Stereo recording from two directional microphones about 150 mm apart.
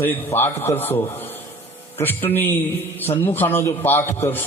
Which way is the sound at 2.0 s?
15° left (ahead or behind).